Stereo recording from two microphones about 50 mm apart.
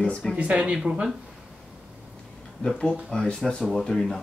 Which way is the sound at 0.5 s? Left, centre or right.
Centre.